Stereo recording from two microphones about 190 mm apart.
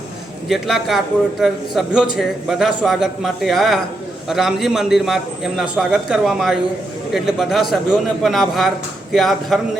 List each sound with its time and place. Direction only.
0.4 s a man's voice: centre (ahead or behind)